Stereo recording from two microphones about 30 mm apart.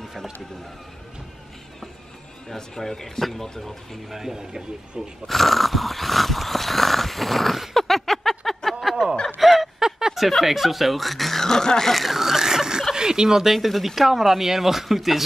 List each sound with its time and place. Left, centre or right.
2.5 s speech: centre
4.1 s speech: centre
4.5 s speech: right
5.2 s dog: centre
7.7 s a sound: centre
9.4 s fowl: centre
10.1 s speech: centre
11.3 s speech: centre
11.9 s a sound: centre
12.9 s speech: right
13.6 s speech: centre